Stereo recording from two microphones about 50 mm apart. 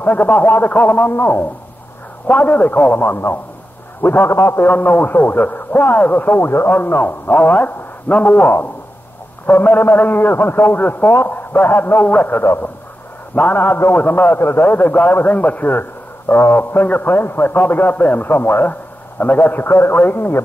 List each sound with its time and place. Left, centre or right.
0.0 s a man's voice: left
4.3 s a man's voice: left
4.6 s a man's voice: left
5.9 s a man's voice: left
9.5 s a man's voice: left